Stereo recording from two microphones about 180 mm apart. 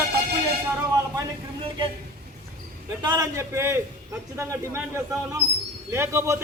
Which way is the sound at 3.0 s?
20° right (ahead or behind).